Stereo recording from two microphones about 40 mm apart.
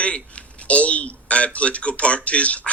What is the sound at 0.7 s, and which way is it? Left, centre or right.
Speech, left.